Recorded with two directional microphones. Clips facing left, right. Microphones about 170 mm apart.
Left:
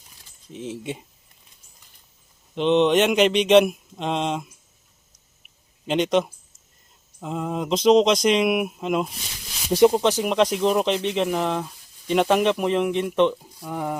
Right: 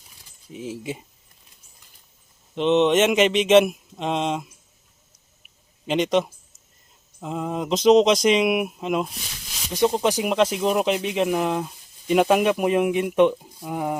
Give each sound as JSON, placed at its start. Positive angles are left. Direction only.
{"t": 0.5, "sound": "mantra", "side_deg": -5}
{"t": 2.6, "sound": "mantra", "side_deg": 0}
{"t": 5.8, "sound": "mantra", "side_deg": 0}
{"t": 10.0, "sound": "speech", "side_deg": -10}